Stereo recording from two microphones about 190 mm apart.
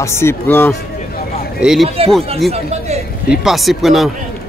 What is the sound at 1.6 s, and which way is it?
Speech, centre (ahead or behind).